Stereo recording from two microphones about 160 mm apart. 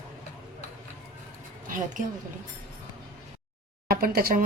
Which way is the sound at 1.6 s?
55° right (ahead or behind).